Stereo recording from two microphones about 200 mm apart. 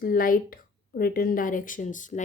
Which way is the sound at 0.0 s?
45° left (ahead or behind).